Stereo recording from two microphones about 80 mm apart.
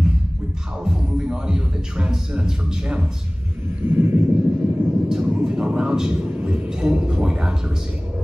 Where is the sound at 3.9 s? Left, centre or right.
Right.